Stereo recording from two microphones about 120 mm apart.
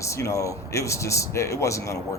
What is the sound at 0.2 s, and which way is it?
Speech, 25° left (ahead or behind).